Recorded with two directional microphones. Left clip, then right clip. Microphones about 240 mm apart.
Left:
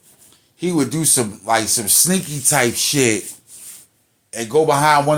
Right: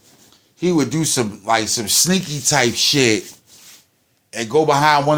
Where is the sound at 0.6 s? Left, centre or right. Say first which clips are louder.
Right 2 dB; right.